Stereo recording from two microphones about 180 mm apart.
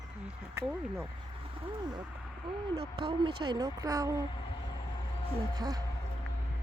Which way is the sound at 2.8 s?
25° right (ahead or behind).